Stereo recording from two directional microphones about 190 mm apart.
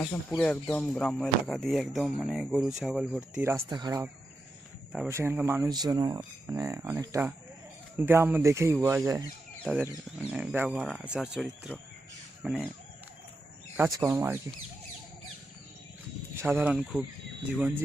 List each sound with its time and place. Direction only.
0.0 s speech: 5° left (ahead or behind)
3.7 s speech: 20° right (ahead or behind); by 12.7 s 5° right (ahead or behind)
13.7 s speech: 15° right (ahead or behind)
16.4 s speech: 10° right (ahead or behind)